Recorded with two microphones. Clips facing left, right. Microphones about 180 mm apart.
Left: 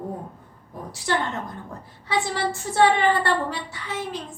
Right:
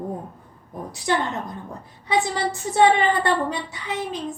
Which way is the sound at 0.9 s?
15° right (ahead or behind).